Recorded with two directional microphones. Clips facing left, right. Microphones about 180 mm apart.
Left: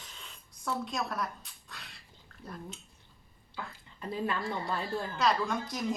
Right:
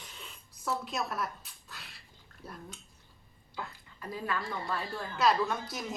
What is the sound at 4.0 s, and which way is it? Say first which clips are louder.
Speech: left 2 dB; 25° left (ahead or behind).